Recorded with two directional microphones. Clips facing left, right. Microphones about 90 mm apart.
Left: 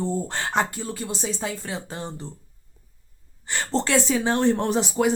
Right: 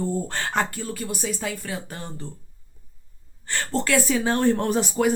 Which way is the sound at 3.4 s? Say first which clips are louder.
Left 1 dB; 20° left (ahead or behind).